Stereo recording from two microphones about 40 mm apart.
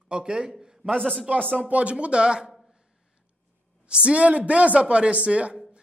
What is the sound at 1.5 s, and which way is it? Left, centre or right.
A woman's voice, right.